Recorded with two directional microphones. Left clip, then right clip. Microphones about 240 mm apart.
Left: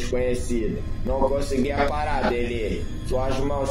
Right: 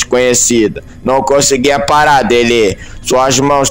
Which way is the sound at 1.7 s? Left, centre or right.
Right.